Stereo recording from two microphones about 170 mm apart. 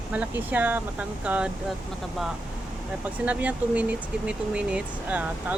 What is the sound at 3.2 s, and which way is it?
Speech, 10° right (ahead or behind).